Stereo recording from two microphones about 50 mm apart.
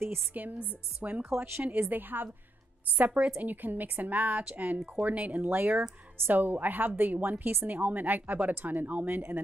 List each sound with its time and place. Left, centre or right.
0.3 s speech: right
3.0 s speech: right